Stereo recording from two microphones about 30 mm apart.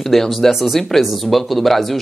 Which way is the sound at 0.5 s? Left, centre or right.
Centre.